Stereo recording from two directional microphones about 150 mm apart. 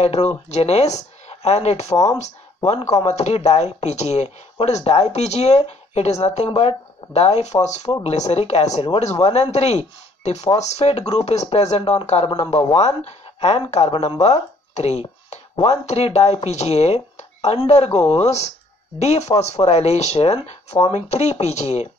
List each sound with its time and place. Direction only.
0.0 s speech: 45° left (ahead or behind)
14.7 s a sound: 45° left (ahead or behind)
15.6 s speech: 45° left (ahead or behind)